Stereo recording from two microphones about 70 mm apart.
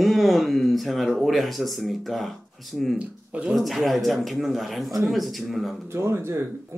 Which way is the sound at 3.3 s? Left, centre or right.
Centre.